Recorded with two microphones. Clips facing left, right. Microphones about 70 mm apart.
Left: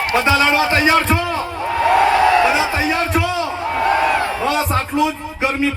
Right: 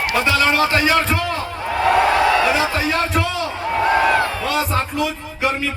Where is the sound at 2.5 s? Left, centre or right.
Centre.